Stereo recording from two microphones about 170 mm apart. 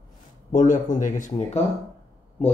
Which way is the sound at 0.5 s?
50° left (ahead or behind).